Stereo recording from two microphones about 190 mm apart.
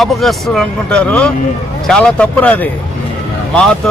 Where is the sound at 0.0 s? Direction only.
Centre (ahead or behind).